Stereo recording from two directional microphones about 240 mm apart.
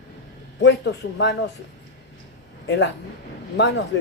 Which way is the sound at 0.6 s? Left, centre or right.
Left.